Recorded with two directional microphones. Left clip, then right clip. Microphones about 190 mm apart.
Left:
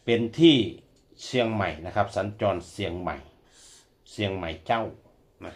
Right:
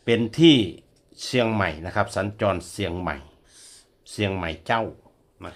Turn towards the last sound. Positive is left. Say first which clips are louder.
# right 3 dB
turn(degrees=-45)  # may be behind; listen again after turning